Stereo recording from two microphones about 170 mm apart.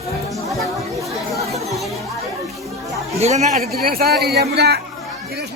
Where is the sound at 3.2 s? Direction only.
40° right (ahead or behind).